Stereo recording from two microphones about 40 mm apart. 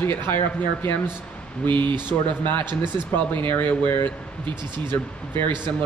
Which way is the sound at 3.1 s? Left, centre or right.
Left.